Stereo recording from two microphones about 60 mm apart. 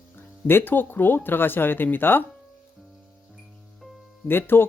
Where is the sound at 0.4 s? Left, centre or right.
Left.